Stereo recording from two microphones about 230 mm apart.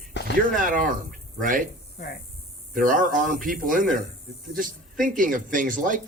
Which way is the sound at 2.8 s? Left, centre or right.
Right.